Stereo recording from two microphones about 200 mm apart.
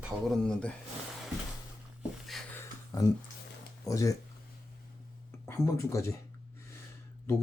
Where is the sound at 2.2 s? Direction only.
Centre (ahead or behind).